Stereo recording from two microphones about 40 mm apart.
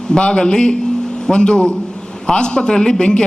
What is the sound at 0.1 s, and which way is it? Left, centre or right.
A man's voice, left.